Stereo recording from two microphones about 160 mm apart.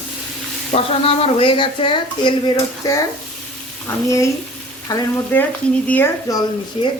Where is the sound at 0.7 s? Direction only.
35° left (ahead or behind).